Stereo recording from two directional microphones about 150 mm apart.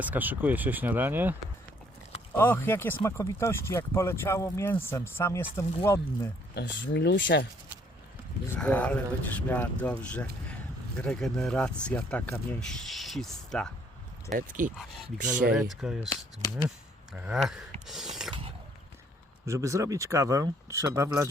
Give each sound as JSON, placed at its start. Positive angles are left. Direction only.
{"t": 0.0, "sound": "speech", "side_deg": -10}
{"t": 2.3, "sound": "speech", "side_deg": 15}
{"t": 6.5, "sound": "speech", "side_deg": 90}
{"t": 8.5, "sound": "speech", "side_deg": 10}
{"t": 14.3, "sound": "speech", "side_deg": -65}
{"t": 15.5, "sound": "speech", "side_deg": 0}
{"t": 17.8, "sound": "mechanisms", "side_deg": 0}
{"t": 19.5, "sound": "speech", "side_deg": -20}